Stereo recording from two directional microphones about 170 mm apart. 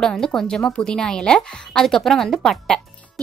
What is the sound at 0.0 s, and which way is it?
Speech, 5° left (ahead or behind).